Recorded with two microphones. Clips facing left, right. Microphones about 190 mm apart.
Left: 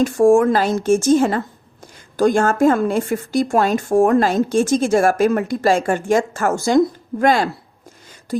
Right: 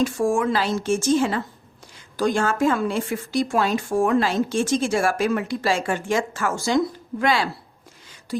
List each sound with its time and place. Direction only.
0.0 s speech: 45° left (ahead or behind)